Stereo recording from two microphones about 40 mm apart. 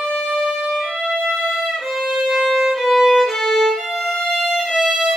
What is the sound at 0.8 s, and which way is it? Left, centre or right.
Music, centre.